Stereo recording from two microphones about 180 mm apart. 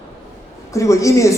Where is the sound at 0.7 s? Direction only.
15° left (ahead or behind).